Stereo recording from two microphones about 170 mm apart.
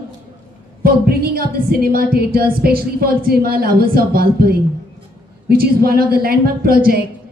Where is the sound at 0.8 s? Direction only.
65° right (ahead or behind).